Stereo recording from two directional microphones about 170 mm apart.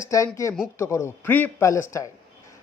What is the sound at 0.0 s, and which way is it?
Speech, 20° left (ahead or behind).